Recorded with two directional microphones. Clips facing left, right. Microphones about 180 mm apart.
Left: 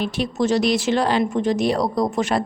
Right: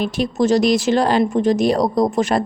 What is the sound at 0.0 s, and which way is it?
A woman's voice, 40° right (ahead or behind).